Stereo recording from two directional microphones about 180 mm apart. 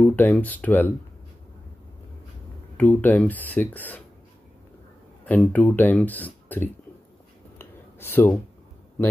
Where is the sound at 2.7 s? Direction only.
10° left (ahead or behind).